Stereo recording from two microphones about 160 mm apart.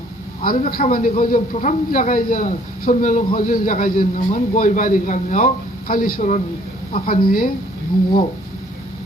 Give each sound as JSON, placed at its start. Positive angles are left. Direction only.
{"t": 0.4, "sound": "a man's voice", "side_deg": 60}